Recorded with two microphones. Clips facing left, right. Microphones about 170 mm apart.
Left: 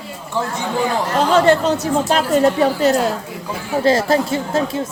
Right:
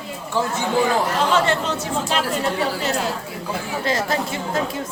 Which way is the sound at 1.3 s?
40° left (ahead or behind).